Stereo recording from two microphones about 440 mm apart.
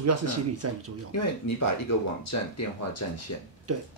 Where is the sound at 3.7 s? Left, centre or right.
Right.